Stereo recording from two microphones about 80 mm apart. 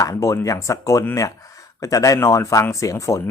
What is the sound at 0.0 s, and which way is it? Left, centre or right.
Speech, left.